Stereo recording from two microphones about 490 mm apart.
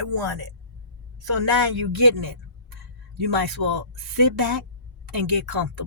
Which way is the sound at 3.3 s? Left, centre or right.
Right.